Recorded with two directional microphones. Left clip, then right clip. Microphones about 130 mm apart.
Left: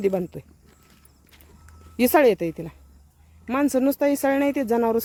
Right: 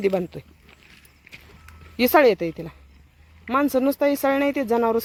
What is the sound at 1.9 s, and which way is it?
Speech, 25° left (ahead or behind).